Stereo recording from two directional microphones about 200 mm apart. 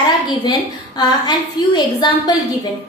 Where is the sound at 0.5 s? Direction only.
20° left (ahead or behind).